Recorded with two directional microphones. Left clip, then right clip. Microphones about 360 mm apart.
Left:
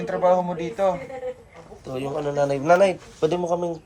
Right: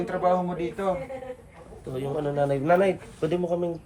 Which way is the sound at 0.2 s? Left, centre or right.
Centre.